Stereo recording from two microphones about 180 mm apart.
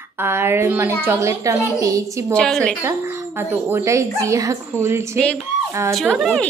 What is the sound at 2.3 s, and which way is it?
Speech, 5° left (ahead or behind).